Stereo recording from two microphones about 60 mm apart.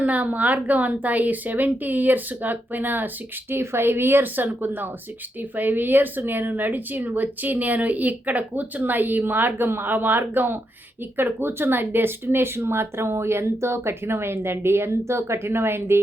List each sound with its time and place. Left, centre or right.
0.0 s a woman's voice: right
3.5 s speech: right